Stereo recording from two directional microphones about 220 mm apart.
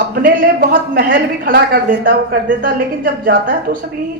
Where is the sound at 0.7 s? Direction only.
40° right (ahead or behind).